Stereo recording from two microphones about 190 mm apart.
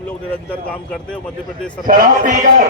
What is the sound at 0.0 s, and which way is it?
Speech, 5° left (ahead or behind).